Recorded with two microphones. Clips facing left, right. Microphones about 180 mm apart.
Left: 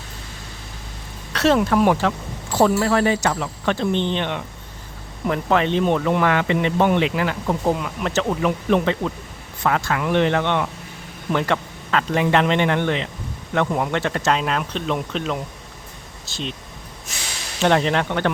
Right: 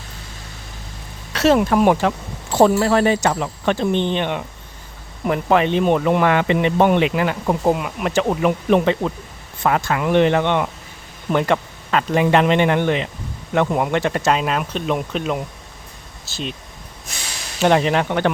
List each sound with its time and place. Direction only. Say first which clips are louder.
1.3 s speech: right 2 dB; 10° right (ahead or behind)
17.6 s speech: right 2 dB; 10° right (ahead or behind)